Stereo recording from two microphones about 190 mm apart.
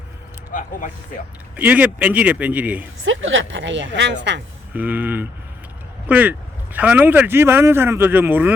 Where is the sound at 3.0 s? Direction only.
90° right; by 4.4 s 65° right (ahead or behind).